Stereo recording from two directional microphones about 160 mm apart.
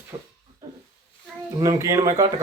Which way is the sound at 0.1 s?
20° right (ahead or behind).